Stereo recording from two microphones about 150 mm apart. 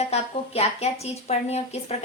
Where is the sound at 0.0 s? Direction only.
45° left (ahead or behind).